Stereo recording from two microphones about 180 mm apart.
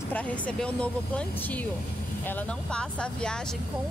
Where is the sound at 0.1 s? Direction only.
5° left (ahead or behind).